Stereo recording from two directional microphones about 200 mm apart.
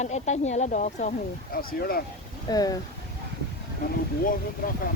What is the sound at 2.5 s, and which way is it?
Speech, 20° left (ahead or behind).